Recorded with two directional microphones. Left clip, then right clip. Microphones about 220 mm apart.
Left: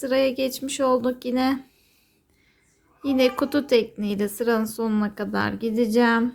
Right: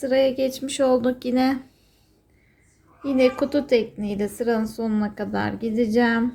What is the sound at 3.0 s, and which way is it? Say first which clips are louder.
A woman's voice: right 1 dB; 20° left (ahead or behind).